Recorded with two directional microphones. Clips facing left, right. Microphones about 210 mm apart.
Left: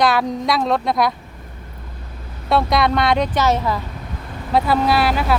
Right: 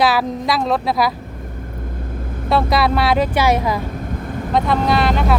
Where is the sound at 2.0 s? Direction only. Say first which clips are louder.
Right 9 dB; 50° right (ahead or behind).